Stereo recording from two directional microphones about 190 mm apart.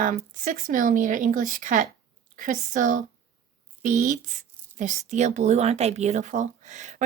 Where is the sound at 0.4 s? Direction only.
45° right (ahead or behind).